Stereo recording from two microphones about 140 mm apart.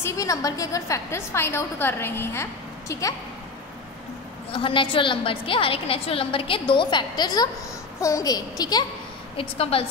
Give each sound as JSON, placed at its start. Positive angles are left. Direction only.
{"t": 0.0, "sound": "a woman's voice", "side_deg": 25}
{"t": 4.5, "sound": "a woman's voice", "side_deg": 40}
{"t": 9.4, "sound": "a woman's voice", "side_deg": 45}